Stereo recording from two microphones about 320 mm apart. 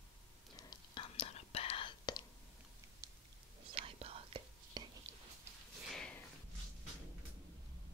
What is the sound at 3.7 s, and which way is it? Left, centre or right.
Whispering, centre.